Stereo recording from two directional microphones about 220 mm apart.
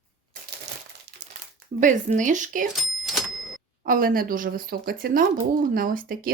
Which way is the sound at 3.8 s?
40° right (ahead or behind).